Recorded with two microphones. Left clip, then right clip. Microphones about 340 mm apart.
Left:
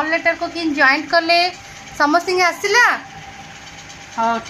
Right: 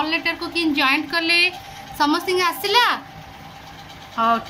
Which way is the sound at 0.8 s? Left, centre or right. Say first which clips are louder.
Left 7 dB; centre.